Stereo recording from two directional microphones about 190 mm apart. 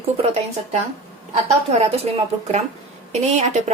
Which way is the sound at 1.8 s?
35° right (ahead or behind).